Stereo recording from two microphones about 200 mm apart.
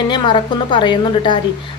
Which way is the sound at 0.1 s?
25° left (ahead or behind).